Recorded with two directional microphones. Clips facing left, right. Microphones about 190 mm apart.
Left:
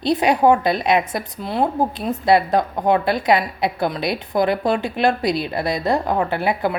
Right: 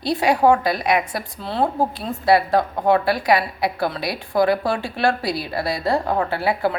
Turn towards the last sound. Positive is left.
turn(degrees=20)  # may be behind; listen again after turning